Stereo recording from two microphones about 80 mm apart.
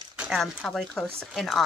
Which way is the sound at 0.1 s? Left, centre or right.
Centre.